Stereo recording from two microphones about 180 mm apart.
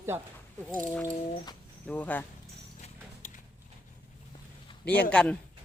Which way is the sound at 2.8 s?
45° left (ahead or behind).